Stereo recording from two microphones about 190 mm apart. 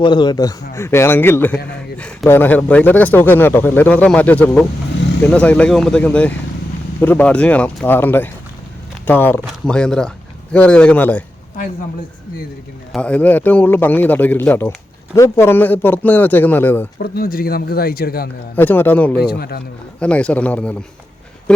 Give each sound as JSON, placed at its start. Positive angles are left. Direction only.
{"t": 0.0, "sound": "a man's voice", "side_deg": 25}
{"t": 12.9, "sound": "a man's voice", "side_deg": 5}
{"t": 17.0, "sound": "speech", "side_deg": 50}
{"t": 18.5, "sound": "a man's voice", "side_deg": 10}
{"t": 19.1, "sound": "speech", "side_deg": 55}
{"t": 20.0, "sound": "a man's voice", "side_deg": 5}